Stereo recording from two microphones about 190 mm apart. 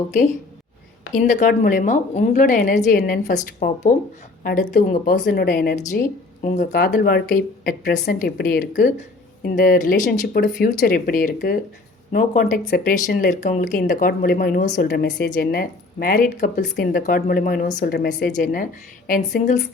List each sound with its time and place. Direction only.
1.1 s a woman's voice: 40° left (ahead or behind)
5.7 s a woman's voice: 40° left (ahead or behind)
6.7 s speech: 55° left (ahead or behind)